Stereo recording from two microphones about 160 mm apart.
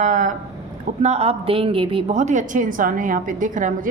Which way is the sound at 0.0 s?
55° right (ahead or behind).